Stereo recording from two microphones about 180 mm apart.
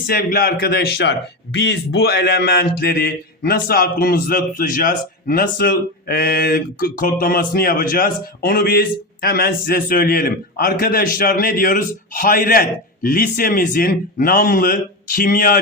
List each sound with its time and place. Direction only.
0.1 s a man's voice: 55° left (ahead or behind)